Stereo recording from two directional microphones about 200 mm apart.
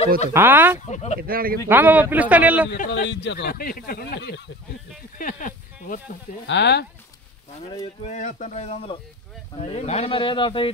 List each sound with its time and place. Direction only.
0.3 s a man's voice: 10° right (ahead or behind)
0.8 s speech: 35° left (ahead or behind)
1.2 s speech: 45° right (ahead or behind)
1.7 s a man's voice: 10° right (ahead or behind)
2.8 s speech: 55° left (ahead or behind)
5.2 s snake: 45° left (ahead or behind)
6.4 s speech: 60° left (ahead or behind)
7.7 s speech: 30° left (ahead or behind)